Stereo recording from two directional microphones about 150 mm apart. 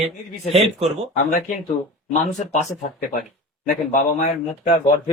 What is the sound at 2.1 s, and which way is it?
Speech, 50° left (ahead or behind).